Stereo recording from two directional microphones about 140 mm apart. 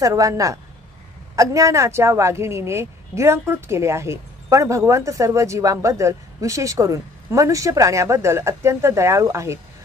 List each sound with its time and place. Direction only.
0.0 s speech: 25° right (ahead or behind)